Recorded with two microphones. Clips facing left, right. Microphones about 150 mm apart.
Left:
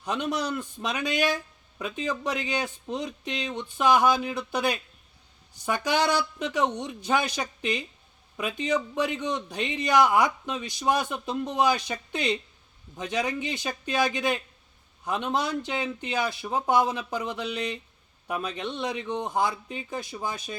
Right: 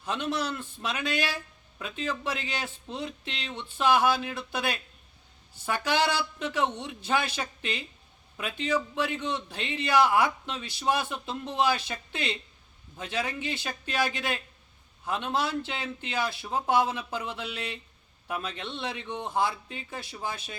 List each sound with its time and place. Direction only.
0.0 s a man's voice: 15° left (ahead or behind)